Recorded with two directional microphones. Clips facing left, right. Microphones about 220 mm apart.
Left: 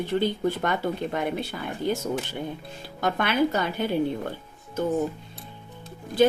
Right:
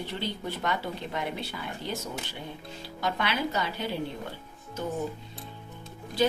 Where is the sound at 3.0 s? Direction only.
50° left (ahead or behind).